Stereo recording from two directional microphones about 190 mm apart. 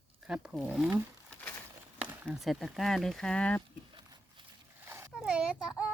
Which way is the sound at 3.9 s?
25° right (ahead or behind).